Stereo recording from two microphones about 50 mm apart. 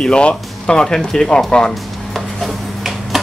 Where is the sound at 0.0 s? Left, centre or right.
Centre.